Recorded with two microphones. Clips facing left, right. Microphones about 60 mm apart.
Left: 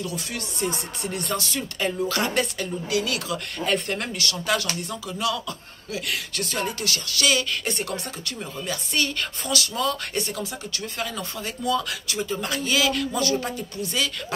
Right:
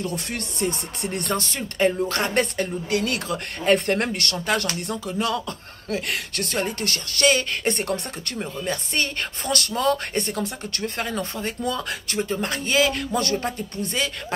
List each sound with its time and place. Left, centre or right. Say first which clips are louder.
0.0 s speech: right 2 dB; right
6.6 s speech: right 1 dB; right
8.6 s speech: even; right